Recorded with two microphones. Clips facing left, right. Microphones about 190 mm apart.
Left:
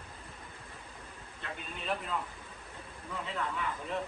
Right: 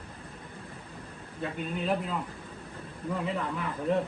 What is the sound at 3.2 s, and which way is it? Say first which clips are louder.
Speech: right 2 dB; 5° right (ahead or behind).